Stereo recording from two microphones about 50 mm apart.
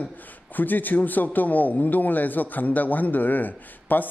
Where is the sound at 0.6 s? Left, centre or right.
Left.